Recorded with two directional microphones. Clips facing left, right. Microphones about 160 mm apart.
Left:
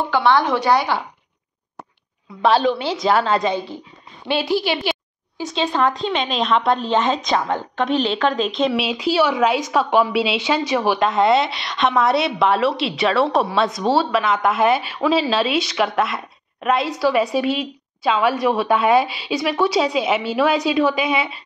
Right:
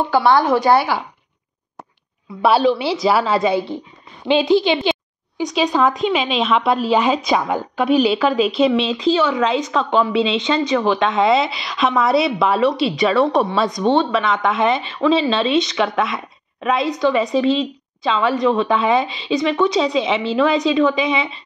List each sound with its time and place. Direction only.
0.7 s a woman's voice: 5° right (ahead or behind)
2.4 s a woman's voice: 10° right (ahead or behind)
4.4 s a woman's voice: 20° right (ahead or behind)
8.7 s a woman's voice: 5° left (ahead or behind)